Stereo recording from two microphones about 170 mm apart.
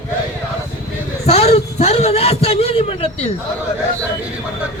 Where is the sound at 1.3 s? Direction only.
35° left (ahead or behind).